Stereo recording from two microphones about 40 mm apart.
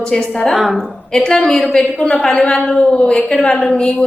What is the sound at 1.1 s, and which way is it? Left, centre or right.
Speech, centre.